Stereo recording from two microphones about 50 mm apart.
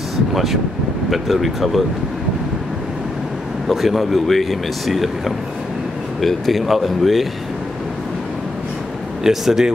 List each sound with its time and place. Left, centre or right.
0.3 s speech: centre
3.6 s speech: centre
9.2 s speech: centre